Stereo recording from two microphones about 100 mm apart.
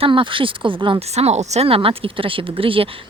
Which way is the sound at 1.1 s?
90° right.